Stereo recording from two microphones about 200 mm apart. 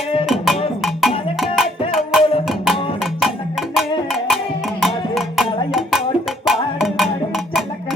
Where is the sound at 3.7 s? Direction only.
Centre (ahead or behind).